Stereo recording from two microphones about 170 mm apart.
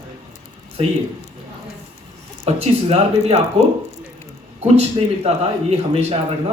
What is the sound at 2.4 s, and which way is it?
Speech, 35° right (ahead or behind).